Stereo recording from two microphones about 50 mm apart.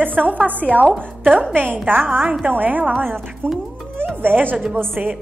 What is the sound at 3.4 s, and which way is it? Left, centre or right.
A woman's voice, right.